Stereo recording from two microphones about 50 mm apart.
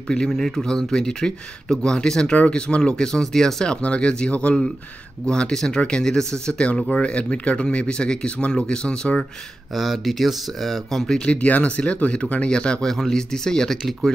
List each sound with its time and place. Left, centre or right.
0.1 s speech: centre
3.7 s speech: left
9.8 s speech: centre
11.2 s speech: left
12.8 s speech: centre